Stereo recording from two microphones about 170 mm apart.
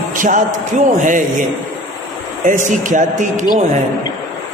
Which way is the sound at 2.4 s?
50° right (ahead or behind).